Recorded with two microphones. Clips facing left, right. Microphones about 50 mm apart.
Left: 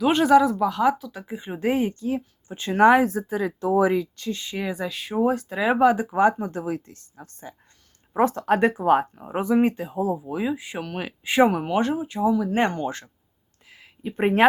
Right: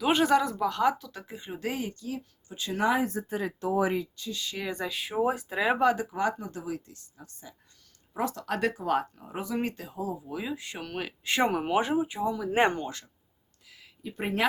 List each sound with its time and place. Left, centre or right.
0.0 s speech: centre
1.2 s speech: centre; by 2.8 s left
2.8 s speech: left
4.3 s speech: left
4.5 s speech: centre
6.1 s speech: left; by 11.6 s centre
11.6 s speech: centre
12.2 s speech: centre
12.5 s speech: centre
13.7 s a sound: left